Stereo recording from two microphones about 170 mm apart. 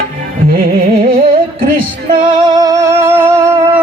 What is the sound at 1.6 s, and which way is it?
Music, 55° right (ahead or behind).